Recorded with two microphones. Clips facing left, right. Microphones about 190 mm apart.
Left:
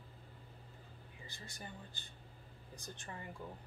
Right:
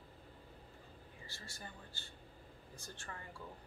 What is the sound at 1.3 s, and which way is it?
Speech, 15° left (ahead or behind).